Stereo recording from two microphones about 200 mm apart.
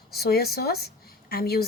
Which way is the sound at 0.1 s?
50° left (ahead or behind).